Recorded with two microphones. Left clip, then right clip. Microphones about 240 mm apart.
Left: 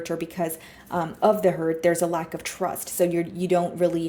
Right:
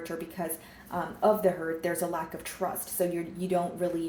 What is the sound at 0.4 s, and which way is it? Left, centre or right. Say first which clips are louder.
Speech: left 7 dB; left.